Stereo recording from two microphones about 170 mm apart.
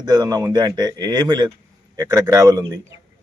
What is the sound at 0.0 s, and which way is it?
A man's voice, 25° right (ahead or behind).